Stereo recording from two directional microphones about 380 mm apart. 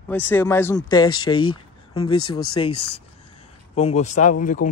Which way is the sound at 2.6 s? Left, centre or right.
Centre.